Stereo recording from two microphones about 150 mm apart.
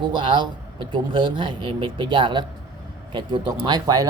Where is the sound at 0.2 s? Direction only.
35° right (ahead or behind).